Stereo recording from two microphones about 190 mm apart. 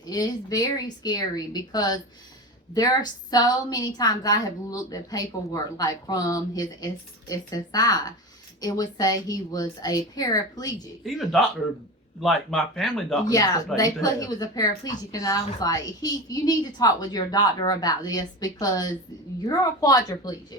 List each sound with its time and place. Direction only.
0.0 s a woman's voice: 20° left (ahead or behind)
11.0 s speech: centre (ahead or behind)
13.2 s a woman's voice: 20° left (ahead or behind)